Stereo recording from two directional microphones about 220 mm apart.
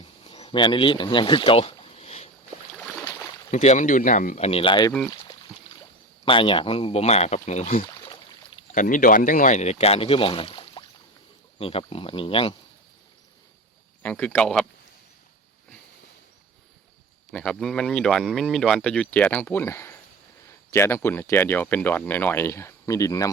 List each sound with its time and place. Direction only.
0.3 s a sound: 25° left (ahead or behind)
2.8 s boat: 15° left (ahead or behind)
3.5 s speech: 30° left (ahead or behind)
4.9 s speech: 5° left (ahead or behind)
6.2 s speech: 25° left (ahead or behind)
8.0 s rowboat: 25° left (ahead or behind)
8.7 s speech: 35° left (ahead or behind)
14.0 s speech: 5° left (ahead or behind)
17.3 s speech: 5° left (ahead or behind)